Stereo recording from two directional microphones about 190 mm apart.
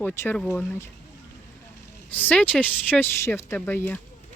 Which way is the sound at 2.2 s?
10° left (ahead or behind).